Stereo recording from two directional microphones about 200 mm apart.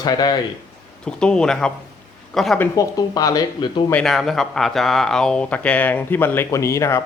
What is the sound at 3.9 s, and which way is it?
Speech, centre (ahead or behind).